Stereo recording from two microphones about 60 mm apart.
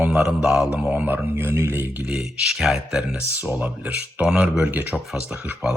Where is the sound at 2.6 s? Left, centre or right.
Centre.